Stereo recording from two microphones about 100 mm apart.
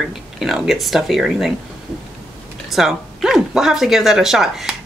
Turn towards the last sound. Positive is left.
turn(degrees=-5)  # may be behind; listen again after turning